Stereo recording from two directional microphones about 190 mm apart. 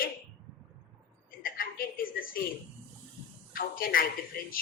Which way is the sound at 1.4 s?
50° left (ahead or behind).